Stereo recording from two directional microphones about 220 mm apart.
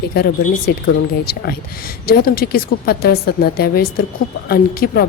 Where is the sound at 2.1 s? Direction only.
40° left (ahead or behind).